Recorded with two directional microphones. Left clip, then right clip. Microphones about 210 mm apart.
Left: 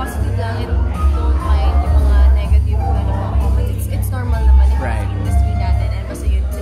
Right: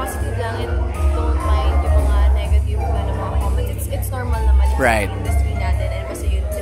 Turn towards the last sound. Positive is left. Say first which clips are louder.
# right 9 dB
turn(degrees=-50)  # may be behind; listen again after turning